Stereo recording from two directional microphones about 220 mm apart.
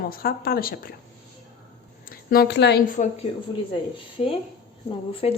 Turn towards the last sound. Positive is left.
turn(degrees=25)  # may be behind; listen again after turning